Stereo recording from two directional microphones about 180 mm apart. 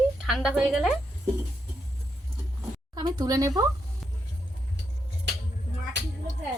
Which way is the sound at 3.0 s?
20° right (ahead or behind).